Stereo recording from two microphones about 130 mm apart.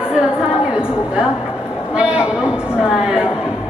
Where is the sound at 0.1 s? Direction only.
5° right (ahead or behind).